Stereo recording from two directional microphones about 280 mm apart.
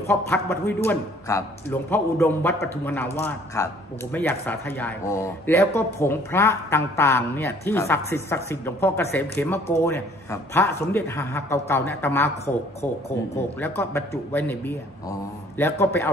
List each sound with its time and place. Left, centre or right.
0.0 s a man's voice: centre